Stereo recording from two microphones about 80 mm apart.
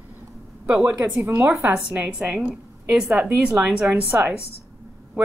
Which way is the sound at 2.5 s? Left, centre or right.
Centre.